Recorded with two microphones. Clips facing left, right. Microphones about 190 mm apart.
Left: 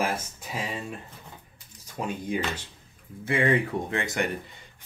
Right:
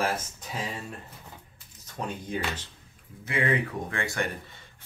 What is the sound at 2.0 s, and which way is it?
Speech, 10° left (ahead or behind).